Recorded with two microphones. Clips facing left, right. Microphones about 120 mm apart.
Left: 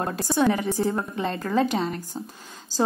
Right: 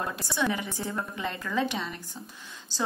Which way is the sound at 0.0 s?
40° left (ahead or behind).